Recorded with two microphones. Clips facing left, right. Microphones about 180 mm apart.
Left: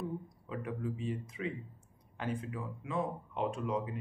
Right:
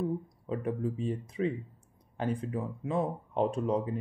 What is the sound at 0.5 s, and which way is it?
Speech, 35° right (ahead or behind).